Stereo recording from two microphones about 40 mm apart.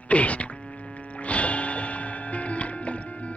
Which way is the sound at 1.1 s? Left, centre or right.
Left.